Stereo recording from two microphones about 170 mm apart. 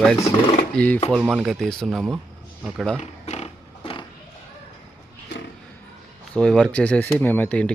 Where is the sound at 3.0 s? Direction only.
40° left (ahead or behind).